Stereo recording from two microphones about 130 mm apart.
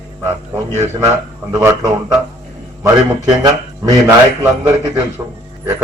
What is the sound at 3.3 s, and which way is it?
Speech, 35° right (ahead or behind).